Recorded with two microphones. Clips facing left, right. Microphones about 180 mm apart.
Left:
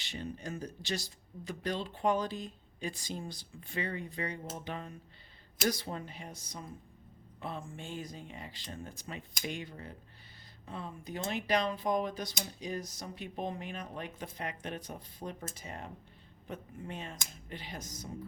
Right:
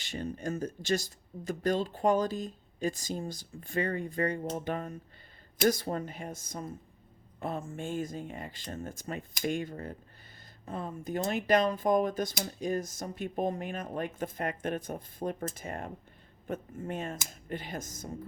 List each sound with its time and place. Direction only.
0.0 s speech: 45° right (ahead or behind)